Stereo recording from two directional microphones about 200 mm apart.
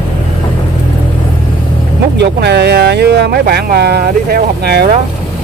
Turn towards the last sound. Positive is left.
turn(degrees=-55)  # may be behind; listen again after turning